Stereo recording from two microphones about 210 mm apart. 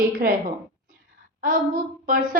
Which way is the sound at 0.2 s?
45° right (ahead or behind).